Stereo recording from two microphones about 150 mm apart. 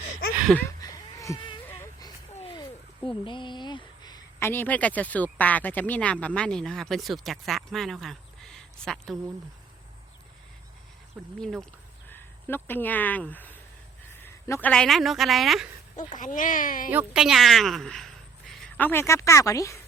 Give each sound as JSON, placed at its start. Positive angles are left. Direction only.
{"t": 0.8, "sound": "a sound", "side_deg": 25}
{"t": 2.5, "sound": "a sound", "side_deg": 30}
{"t": 4.4, "sound": "speech", "side_deg": 15}
{"t": 11.3, "sound": "a woman's voice", "side_deg": 5}
{"t": 12.0, "sound": "speech", "side_deg": 15}
{"t": 14.2, "sound": "a sound", "side_deg": 15}
{"t": 14.7, "sound": "a woman's voice", "side_deg": 5}
{"t": 16.0, "sound": "speech", "side_deg": 55}
{"t": 16.9, "sound": "speech", "side_deg": -10}
{"t": 18.9, "sound": "speech", "side_deg": 15}